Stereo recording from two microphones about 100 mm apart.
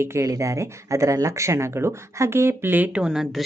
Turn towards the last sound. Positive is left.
turn(degrees=-5)  # may be behind; listen again after turning